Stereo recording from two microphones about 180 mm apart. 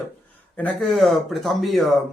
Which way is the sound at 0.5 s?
5° left (ahead or behind).